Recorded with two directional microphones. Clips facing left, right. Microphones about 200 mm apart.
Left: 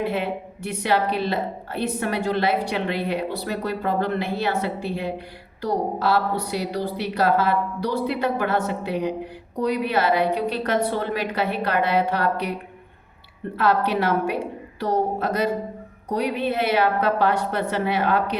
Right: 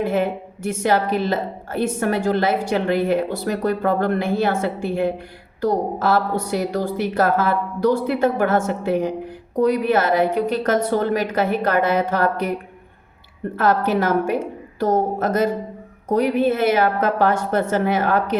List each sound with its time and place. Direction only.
0.0 s a woman's voice: 45° right (ahead or behind)
13.6 s a woman's voice: 45° right (ahead or behind)